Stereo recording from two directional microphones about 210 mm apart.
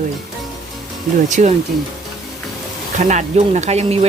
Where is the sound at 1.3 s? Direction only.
35° right (ahead or behind).